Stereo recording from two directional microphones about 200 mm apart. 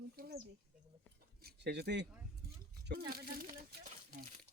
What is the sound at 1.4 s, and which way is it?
Speech, 55° right (ahead or behind).